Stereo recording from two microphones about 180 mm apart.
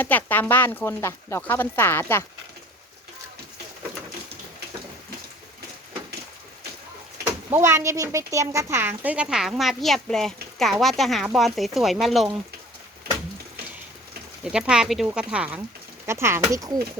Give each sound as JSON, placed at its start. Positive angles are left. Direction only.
{"t": 0.0, "sound": "speech", "side_deg": 10}
{"t": 7.3, "sound": "a woman's voice", "side_deg": -15}
{"t": 14.5, "sound": "a woman's voice", "side_deg": -5}